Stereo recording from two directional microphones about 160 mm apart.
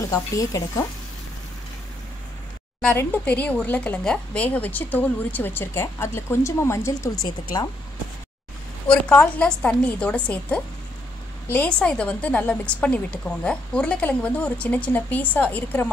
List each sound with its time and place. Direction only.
0.0 s speech: 20° left (ahead or behind)
2.8 s speech: 10° left (ahead or behind)
8.8 s speech: 10° left (ahead or behind)